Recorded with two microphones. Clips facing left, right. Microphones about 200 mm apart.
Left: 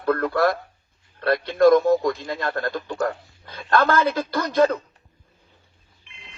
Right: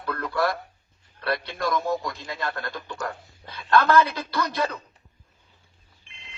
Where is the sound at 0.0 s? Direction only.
50° left (ahead or behind).